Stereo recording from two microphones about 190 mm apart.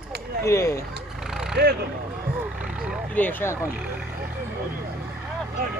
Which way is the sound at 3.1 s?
10° left (ahead or behind).